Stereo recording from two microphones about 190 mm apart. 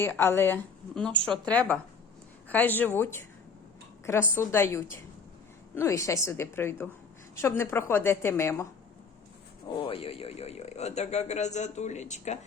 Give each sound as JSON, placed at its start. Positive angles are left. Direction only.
{"t": 0.0, "sound": "speech", "side_deg": 15}
{"t": 9.6, "sound": "speech", "side_deg": 30}